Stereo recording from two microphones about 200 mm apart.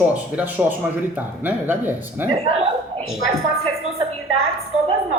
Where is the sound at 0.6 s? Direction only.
10° right (ahead or behind).